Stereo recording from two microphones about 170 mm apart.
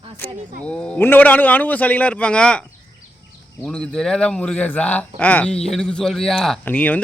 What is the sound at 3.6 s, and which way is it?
A man's voice, 5° left (ahead or behind).